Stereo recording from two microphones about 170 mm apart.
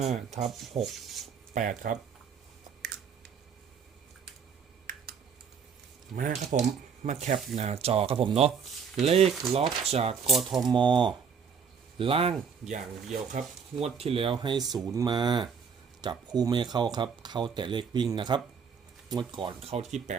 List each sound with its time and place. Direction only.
0.0 s speech: 40° right (ahead or behind)
0.5 s filing: centre (ahead or behind)
1.5 s speech: 50° right (ahead or behind)
6.1 s speech: 50° right (ahead or behind)
10.2 s filing: centre (ahead or behind)
10.7 s speech: 30° right (ahead or behind)